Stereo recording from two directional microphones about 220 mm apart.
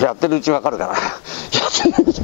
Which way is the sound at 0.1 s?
15° left (ahead or behind).